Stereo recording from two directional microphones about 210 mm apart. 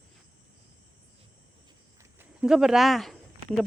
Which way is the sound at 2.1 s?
5° right (ahead or behind).